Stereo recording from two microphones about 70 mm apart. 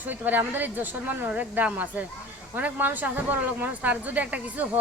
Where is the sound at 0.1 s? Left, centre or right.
Right.